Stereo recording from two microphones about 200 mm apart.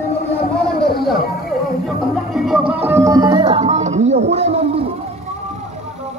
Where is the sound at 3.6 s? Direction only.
35° right (ahead or behind).